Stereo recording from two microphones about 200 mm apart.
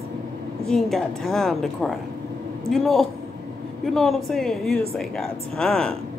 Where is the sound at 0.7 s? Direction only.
Centre (ahead or behind).